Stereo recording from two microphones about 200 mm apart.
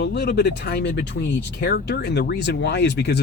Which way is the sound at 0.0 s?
55° left (ahead or behind).